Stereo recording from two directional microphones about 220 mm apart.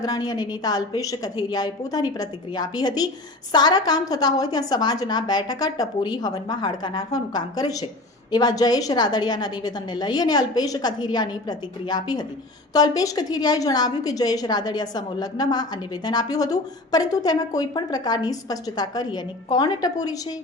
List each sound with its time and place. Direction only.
0.0 s a woman's voice: 20° left (ahead or behind)